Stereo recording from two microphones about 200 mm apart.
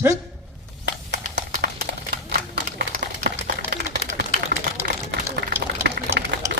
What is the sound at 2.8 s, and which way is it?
Run, 50° right (ahead or behind).